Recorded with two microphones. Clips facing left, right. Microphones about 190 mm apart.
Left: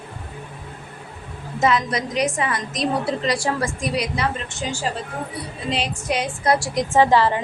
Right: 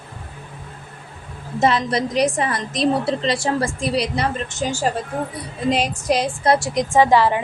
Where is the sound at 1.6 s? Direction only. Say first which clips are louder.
Right 2 dB; 30° right (ahead or behind).